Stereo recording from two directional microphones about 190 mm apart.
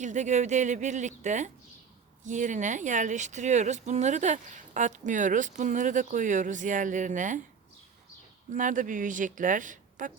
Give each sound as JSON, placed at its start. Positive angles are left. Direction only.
{"t": 0.0, "sound": "speech", "side_deg": -40}
{"t": 8.5, "sound": "speech", "side_deg": -45}